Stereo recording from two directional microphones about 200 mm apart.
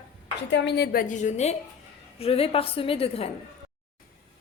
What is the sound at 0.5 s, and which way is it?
Speech, 60° left (ahead or behind).